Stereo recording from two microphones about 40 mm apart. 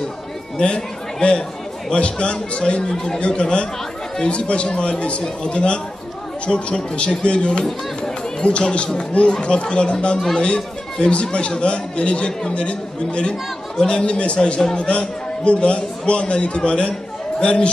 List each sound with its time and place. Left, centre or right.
0.6 s a man's voice: left
7.6 s run: centre
8.5 s a man's voice: left